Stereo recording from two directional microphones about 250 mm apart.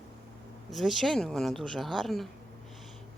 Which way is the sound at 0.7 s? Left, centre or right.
Centre.